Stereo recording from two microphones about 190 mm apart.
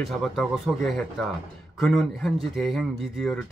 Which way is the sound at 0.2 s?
Centre (ahead or behind).